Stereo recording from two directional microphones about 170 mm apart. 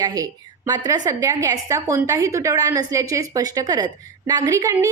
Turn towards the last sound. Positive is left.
turn(degrees=-15)  # may be behind; listen again after turning